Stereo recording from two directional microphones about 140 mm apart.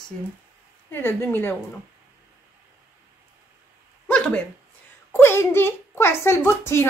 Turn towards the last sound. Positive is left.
turn(degrees=20)  # may be behind; listen again after turning